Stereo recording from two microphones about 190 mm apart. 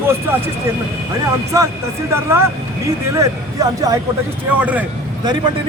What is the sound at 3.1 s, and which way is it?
Speech, 15° right (ahead or behind).